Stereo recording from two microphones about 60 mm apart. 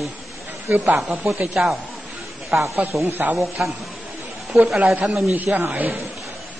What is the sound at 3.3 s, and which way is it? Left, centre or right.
Speech, centre.